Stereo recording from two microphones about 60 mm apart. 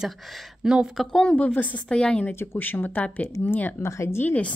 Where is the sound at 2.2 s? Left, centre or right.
Left.